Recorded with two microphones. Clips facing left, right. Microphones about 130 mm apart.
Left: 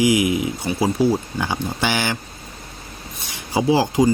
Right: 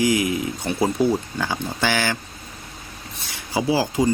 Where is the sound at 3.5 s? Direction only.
20° left (ahead or behind).